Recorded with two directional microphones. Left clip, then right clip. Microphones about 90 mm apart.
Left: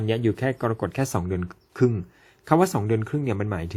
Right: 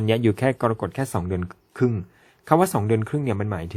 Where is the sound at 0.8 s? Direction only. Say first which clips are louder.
Even; 15° right (ahead or behind).